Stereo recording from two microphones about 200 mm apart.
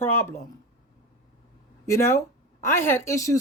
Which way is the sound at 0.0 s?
10° left (ahead or behind).